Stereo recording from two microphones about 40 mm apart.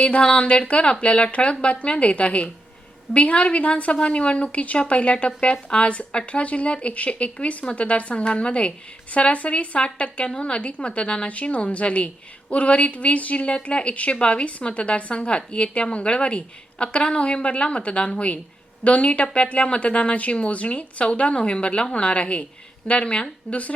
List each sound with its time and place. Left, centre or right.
0.0 s a woman's voice: left